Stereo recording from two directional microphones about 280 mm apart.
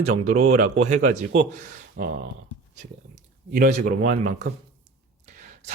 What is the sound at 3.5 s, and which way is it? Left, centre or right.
Speech, right.